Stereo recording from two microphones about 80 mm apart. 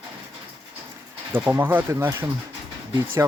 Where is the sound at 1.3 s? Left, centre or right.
Right.